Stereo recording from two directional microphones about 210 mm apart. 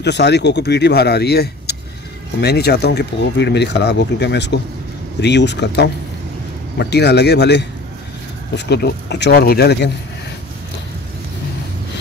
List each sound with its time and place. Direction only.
0.0 s speech: 55° left (ahead or behind)